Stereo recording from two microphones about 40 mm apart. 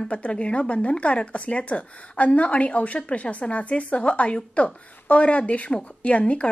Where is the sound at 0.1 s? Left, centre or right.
Left.